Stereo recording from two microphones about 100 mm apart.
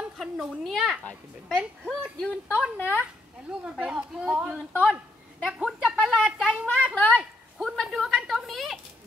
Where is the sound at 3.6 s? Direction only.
10° right (ahead or behind).